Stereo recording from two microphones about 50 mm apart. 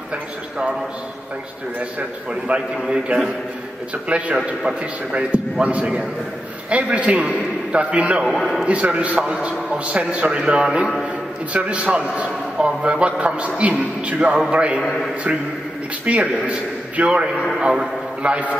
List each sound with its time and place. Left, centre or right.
1.8 s a man's voice: right
8.4 s a man's voice: centre
8.6 s a man's voice: right
14.8 s a man's voice: centre
16.1 s a man's voice: right